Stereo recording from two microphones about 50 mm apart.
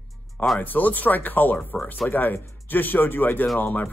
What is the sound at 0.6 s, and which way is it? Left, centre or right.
Speech, left.